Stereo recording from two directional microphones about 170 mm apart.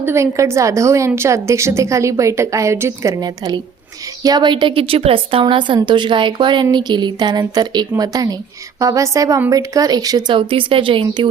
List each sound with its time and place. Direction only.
0.0 s a woman's voice: 15° right (ahead or behind)